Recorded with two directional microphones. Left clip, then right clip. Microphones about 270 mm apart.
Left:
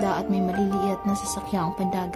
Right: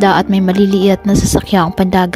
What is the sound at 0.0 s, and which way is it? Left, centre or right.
Speech, right.